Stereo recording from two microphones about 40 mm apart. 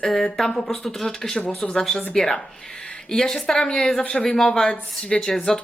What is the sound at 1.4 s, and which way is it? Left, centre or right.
Speech, left.